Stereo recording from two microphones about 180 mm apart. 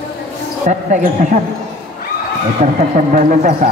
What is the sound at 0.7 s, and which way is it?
Speech, 45° right (ahead or behind).